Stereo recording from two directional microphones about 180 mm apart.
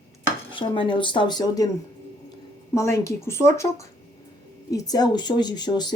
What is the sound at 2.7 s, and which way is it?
A woman's voice, 15° left (ahead or behind).